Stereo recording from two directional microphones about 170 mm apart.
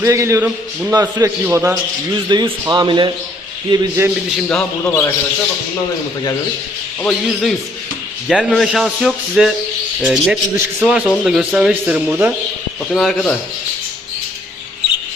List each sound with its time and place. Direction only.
0.0 s a man's voice: 15° right (ahead or behind)
3.7 s a man's voice: 15° right (ahead or behind)
4.4 s a man's voice: 5° left (ahead or behind)
7.0 s a man's voice: 5° left (ahead or behind)
12.9 s speech: 5° left (ahead or behind)